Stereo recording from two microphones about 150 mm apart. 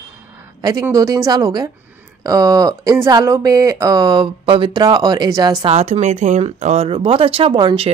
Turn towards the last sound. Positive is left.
turn(degrees=-35)  # may be behind; listen again after turning